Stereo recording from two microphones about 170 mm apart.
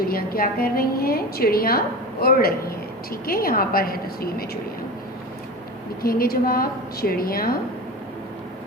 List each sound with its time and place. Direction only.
0.0 s a woman's voice: 60° left (ahead or behind)
6.0 s a woman's voice: 60° left (ahead or behind)